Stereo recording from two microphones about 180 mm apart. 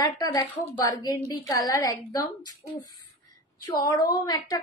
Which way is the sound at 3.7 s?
20° left (ahead or behind).